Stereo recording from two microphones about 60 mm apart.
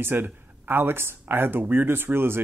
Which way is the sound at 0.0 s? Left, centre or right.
Right.